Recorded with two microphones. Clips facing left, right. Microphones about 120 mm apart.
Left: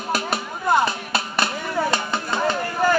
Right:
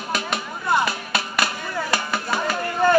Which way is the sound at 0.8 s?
30° left (ahead or behind).